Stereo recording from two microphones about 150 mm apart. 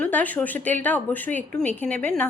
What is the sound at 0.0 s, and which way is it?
A woman's voice, 10° left (ahead or behind).